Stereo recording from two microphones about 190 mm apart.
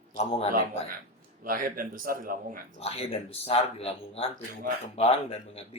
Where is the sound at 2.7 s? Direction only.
30° left (ahead or behind).